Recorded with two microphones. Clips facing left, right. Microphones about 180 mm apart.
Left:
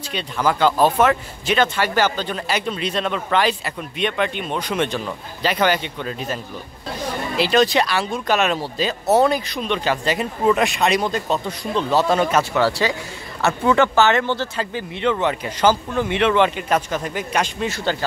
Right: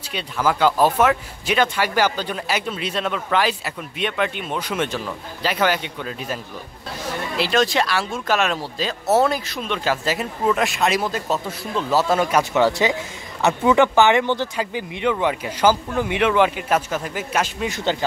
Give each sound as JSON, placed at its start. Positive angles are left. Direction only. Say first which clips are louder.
{"t": 0.1, "sound": "speech", "louder": "left 1 dB", "side_deg": -5}
{"t": 7.3, "sound": "speech", "louder": "left 3 dB", "side_deg": 0}
{"t": 17.6, "sound": "speech", "louder": "even", "side_deg": -20}